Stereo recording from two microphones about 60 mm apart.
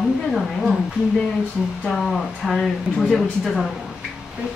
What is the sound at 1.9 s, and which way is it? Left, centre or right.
Speech, centre.